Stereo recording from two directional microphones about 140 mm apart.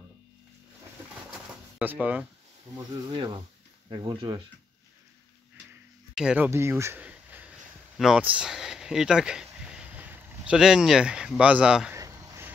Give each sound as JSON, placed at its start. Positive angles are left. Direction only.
{"t": 1.8, "sound": "speech", "side_deg": -10}
{"t": 2.7, "sound": "speech", "side_deg": -35}
{"t": 6.1, "sound": "speech", "side_deg": -10}
{"t": 11.9, "sound": "a sound", "side_deg": -20}